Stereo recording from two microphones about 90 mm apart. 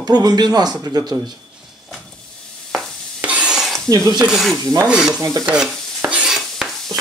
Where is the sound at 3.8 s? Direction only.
40° right (ahead or behind).